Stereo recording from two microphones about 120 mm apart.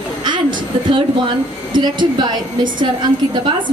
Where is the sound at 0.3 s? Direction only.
40° right (ahead or behind).